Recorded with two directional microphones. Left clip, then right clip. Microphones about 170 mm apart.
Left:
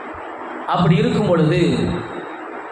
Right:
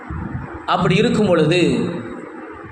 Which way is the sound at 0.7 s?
40° right (ahead or behind).